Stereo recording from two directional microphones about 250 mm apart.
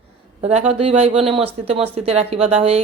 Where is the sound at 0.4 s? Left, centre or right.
Right.